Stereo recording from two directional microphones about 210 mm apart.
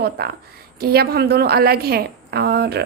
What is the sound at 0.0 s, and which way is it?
A woman's voice, 50° right (ahead or behind).